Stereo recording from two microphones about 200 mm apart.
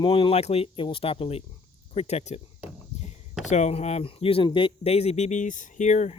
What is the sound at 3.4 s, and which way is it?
Speech, 35° left (ahead or behind).